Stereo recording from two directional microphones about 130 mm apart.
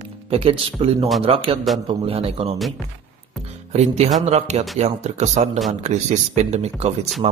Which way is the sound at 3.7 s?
60° right (ahead or behind).